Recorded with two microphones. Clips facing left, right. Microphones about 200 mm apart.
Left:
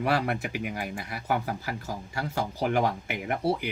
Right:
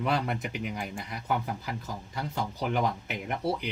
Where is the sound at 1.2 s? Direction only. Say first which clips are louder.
Left 2 dB; 80° left.